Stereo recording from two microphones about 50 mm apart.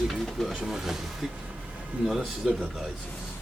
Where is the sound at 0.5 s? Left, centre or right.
Centre.